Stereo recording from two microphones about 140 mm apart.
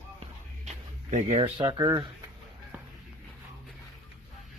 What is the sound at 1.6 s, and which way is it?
Speech, 30° right (ahead or behind).